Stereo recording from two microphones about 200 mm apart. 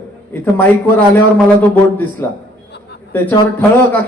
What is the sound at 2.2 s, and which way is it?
Speech, 10° left (ahead or behind).